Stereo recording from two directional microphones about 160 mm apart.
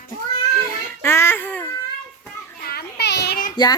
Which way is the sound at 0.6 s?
15° left (ahead or behind).